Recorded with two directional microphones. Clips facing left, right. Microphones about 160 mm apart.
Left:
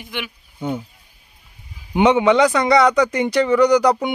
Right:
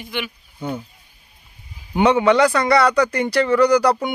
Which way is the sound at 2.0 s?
20° left (ahead or behind).